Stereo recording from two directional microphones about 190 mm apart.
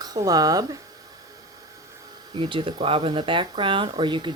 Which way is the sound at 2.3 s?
25° right (ahead or behind).